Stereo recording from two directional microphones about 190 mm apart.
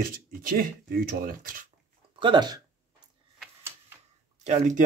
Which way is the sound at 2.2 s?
25° right (ahead or behind).